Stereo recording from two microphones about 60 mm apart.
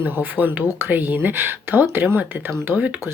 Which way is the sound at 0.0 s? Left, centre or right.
Right.